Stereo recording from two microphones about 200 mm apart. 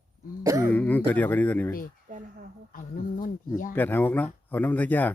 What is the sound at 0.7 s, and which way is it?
Speech, 10° left (ahead or behind).